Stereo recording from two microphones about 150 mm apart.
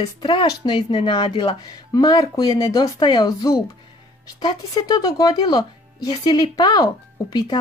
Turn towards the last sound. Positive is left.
turn(degrees=25)  # may be behind; listen again after turning